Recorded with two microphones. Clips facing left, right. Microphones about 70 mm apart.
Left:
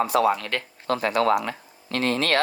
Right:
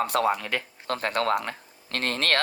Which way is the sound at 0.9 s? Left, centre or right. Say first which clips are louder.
Left 4 dB; right.